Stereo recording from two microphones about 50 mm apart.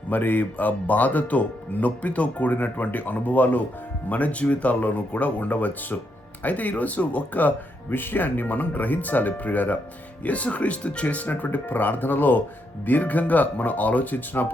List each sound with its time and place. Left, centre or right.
0.1 s speech: left
11.3 s speech: left